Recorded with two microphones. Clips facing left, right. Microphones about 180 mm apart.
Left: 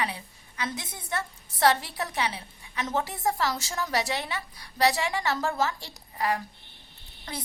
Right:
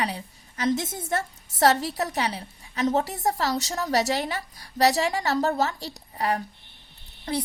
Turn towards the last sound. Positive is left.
turn(degrees=-30)  # may be behind; listen again after turning